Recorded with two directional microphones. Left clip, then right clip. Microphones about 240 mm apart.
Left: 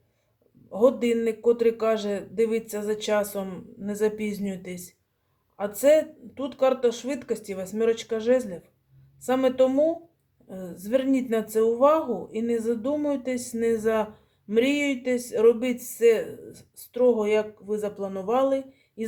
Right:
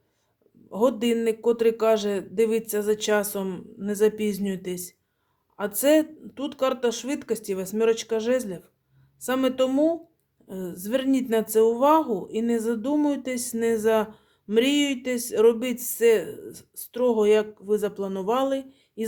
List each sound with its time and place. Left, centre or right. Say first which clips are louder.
0.7 s a man's voice: left 2 dB; right